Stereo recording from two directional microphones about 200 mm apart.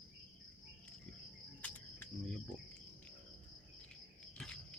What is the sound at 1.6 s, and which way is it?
Cricket, 5° left (ahead or behind).